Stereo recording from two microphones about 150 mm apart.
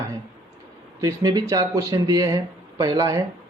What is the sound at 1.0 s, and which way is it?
Speech, 25° right (ahead or behind).